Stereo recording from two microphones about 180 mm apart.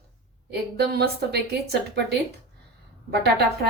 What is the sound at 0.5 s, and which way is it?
A woman's voice, 65° right (ahead or behind).